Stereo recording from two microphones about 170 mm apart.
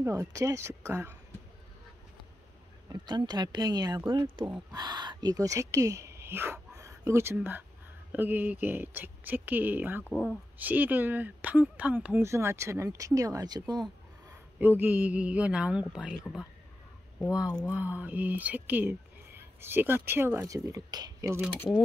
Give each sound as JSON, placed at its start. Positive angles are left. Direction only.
{"t": 0.0, "sound": "speech", "side_deg": -15}
{"t": 2.9, "sound": "speech", "side_deg": -25}
{"t": 10.0, "sound": "speech", "side_deg": 10}
{"t": 10.6, "sound": "speech", "side_deg": -10}
{"t": 14.6, "sound": "speech", "side_deg": -10}
{"t": 17.6, "sound": "speech", "side_deg": -10}